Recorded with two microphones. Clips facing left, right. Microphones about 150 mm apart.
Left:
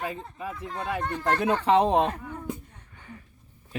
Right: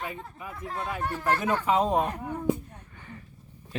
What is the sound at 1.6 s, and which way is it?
Speech, 70° left (ahead or behind).